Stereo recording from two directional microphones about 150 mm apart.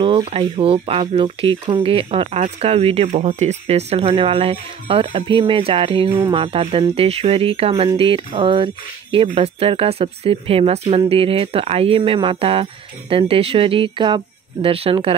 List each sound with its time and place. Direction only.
0.0 s speech: 35° right (ahead or behind)